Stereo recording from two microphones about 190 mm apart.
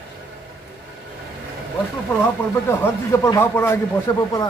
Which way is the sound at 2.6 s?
15° left (ahead or behind).